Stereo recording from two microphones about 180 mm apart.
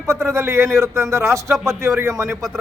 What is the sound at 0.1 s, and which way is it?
Speech, 15° right (ahead or behind).